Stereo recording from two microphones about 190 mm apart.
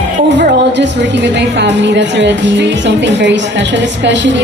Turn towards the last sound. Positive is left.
turn(degrees=-70)  # may be behind; listen again after turning